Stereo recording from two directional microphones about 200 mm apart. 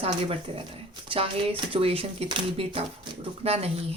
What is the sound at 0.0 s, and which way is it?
Speech, 30° right (ahead or behind).